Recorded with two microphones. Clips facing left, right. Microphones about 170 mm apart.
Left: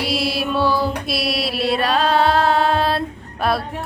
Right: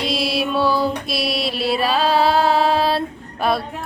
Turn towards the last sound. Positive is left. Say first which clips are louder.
# even
turn(degrees=0)  # may be behind; listen again after turning